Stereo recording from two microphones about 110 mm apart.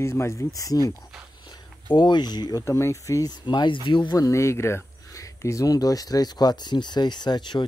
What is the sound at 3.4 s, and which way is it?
Speech, 45° left (ahead or behind).